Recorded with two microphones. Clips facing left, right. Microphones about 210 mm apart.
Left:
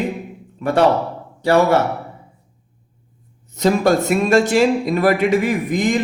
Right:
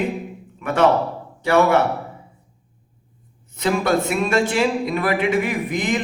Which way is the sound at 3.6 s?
40° left (ahead or behind).